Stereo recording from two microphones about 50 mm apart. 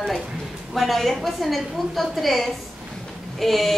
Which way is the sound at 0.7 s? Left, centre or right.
Centre.